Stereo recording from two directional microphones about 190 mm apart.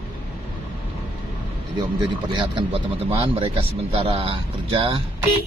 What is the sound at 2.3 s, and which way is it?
Speech, 30° right (ahead or behind).